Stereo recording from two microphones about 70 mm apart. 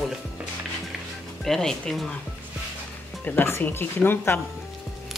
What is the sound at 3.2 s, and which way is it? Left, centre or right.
Speech, left.